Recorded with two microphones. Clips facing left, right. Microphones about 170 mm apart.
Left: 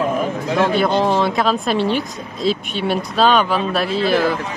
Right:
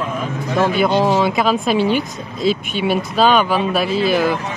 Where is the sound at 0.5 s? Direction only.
Centre (ahead or behind).